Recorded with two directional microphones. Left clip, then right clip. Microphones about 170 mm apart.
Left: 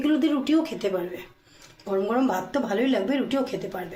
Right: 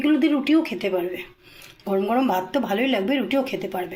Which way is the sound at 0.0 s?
15° right (ahead or behind).